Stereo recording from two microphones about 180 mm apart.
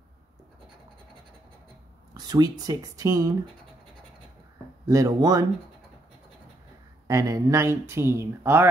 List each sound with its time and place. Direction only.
2.1 s speech: 20° right (ahead or behind)
4.8 s speech: 20° right (ahead or behind)
7.1 s speech: 20° right (ahead or behind)